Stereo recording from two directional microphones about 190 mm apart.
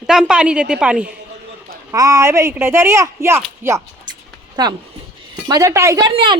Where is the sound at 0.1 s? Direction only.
5° right (ahead or behind).